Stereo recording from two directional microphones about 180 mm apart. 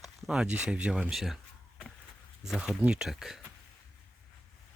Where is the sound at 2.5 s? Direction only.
Centre (ahead or behind).